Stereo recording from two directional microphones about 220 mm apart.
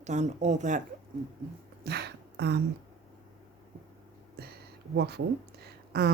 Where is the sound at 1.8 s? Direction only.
45° right (ahead or behind).